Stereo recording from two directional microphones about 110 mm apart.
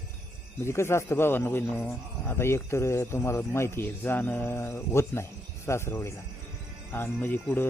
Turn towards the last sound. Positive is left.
turn(degrees=15)  # may be behind; listen again after turning